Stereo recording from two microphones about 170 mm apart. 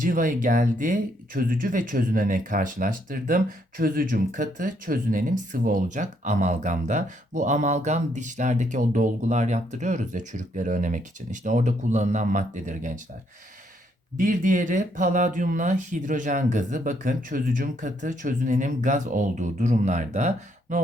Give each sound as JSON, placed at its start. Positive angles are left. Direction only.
{"t": 0.0, "sound": "speech", "side_deg": -50}
{"t": 14.2, "sound": "speech", "side_deg": -50}